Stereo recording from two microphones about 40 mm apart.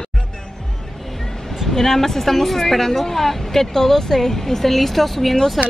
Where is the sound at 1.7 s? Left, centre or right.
Centre.